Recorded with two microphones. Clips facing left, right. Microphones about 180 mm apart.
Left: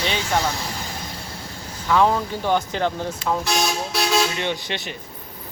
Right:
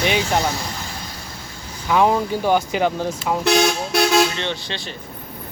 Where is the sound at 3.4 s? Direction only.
65° right (ahead or behind).